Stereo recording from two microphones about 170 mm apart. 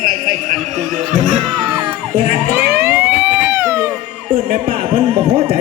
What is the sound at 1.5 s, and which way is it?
Music, 30° right (ahead or behind).